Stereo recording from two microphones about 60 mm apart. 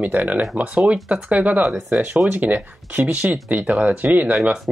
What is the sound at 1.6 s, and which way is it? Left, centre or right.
Speech, centre.